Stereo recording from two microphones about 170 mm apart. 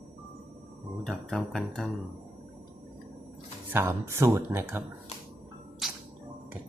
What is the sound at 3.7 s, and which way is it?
Speech, 15° right (ahead or behind).